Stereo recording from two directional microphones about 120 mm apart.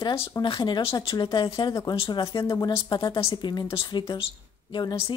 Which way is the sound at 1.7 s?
30° left (ahead or behind).